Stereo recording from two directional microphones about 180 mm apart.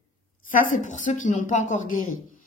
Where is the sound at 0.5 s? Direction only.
50° left (ahead or behind).